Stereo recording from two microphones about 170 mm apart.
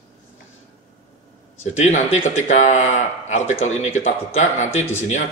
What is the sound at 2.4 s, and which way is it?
A man's voice, 45° left (ahead or behind).